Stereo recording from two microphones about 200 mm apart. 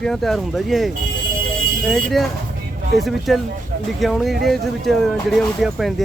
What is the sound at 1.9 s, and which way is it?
A man's voice, centre (ahead or behind).